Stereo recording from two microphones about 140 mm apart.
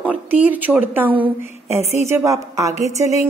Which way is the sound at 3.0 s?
55° left (ahead or behind).